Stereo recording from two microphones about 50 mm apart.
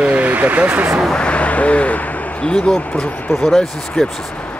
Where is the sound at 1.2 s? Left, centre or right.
Left.